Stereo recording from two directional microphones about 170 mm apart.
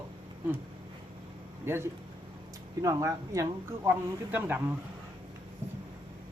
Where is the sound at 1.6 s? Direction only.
15° right (ahead or behind).